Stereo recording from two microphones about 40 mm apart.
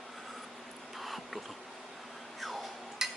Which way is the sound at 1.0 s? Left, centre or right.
Centre.